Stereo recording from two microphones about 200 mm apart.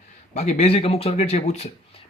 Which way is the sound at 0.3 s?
35° left (ahead or behind).